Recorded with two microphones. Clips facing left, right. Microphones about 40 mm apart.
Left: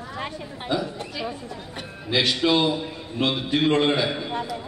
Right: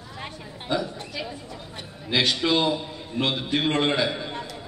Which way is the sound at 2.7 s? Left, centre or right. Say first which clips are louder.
Even; centre.